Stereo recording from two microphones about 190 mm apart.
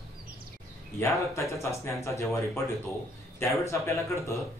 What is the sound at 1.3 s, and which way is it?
Speech, 15° left (ahead or behind).